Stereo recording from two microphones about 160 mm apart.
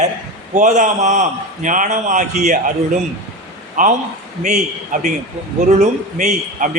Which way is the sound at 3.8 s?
55° right (ahead or behind).